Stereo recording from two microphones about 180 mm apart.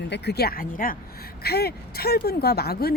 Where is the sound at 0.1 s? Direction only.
65° left (ahead or behind).